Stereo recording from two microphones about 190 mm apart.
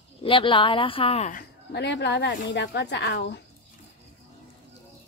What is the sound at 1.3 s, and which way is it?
A woman's voice, 60° left (ahead or behind).